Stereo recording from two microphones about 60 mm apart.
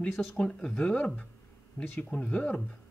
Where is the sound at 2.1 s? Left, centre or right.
Left.